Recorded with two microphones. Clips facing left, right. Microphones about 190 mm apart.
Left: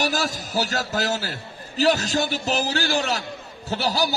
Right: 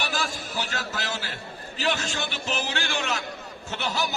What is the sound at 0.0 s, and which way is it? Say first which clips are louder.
A man's voice: left 6 dB; 40° left (ahead or behind).